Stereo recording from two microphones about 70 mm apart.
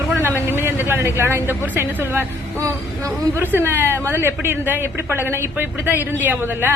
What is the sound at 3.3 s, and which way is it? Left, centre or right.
A man's voice, right.